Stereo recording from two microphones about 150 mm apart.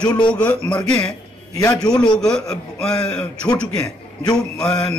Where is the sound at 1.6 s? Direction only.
25° left (ahead or behind).